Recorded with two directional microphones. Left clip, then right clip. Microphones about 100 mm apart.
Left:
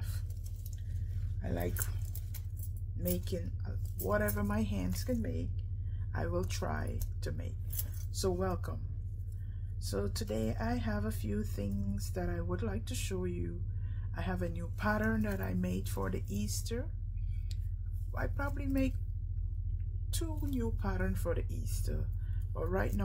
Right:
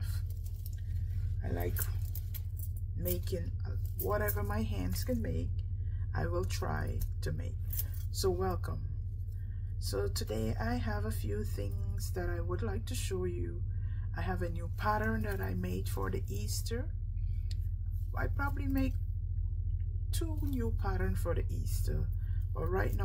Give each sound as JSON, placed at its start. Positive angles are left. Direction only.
{"t": 1.4, "sound": "a sound", "side_deg": 35}
{"t": 3.3, "sound": "speech", "side_deg": 20}
{"t": 9.8, "sound": "speech", "side_deg": 20}
{"t": 18.1, "sound": "speech", "side_deg": 25}
{"t": 20.1, "sound": "a sound", "side_deg": 40}
{"t": 20.7, "sound": "speech", "side_deg": 25}